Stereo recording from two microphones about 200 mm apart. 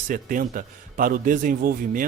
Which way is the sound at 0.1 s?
45° right (ahead or behind).